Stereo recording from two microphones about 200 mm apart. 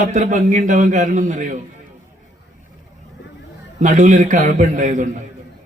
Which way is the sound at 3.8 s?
40° right (ahead or behind).